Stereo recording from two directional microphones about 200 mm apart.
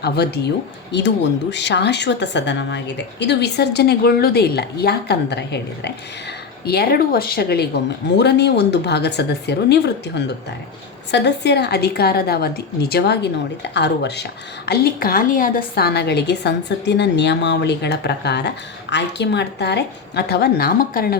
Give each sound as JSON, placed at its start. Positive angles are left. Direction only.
{"t": 0.0, "sound": "a woman's voice", "side_deg": 55}
{"t": 14.7, "sound": "a woman's voice", "side_deg": 50}